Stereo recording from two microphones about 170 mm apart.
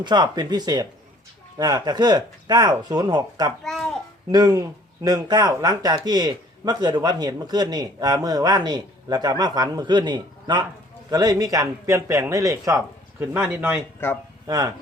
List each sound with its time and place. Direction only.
0.0 s a man's voice: 25° right (ahead or behind)
3.6 s a sound: centre (ahead or behind)
4.3 s a man's voice: 20° right (ahead or behind)